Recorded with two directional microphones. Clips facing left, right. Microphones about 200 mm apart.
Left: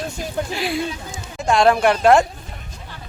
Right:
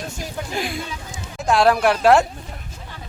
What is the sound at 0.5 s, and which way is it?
Speech, 50° right (ahead or behind).